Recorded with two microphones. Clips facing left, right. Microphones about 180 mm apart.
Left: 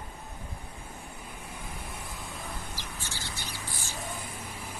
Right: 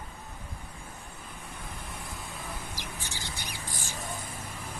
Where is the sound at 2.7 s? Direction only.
15° right (ahead or behind).